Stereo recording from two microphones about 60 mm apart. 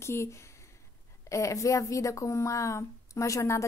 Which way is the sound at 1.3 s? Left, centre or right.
Left.